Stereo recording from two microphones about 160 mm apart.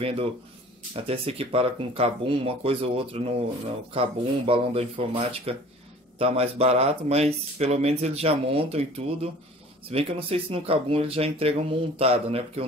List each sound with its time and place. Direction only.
0.0 s speech: 35° right (ahead or behind)